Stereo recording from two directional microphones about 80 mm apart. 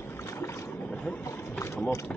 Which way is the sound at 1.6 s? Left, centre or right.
Left.